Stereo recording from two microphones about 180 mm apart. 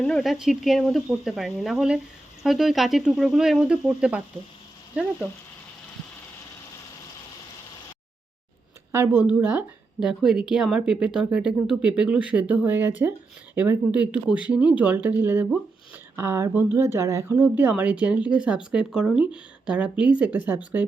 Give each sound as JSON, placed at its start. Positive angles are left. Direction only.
{"t": 0.0, "sound": "a woman's voice", "side_deg": 0}
{"t": 8.9, "sound": "a woman's voice", "side_deg": -10}